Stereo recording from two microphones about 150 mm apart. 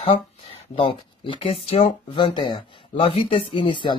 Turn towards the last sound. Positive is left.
turn(degrees=30)  # may be behind; listen again after turning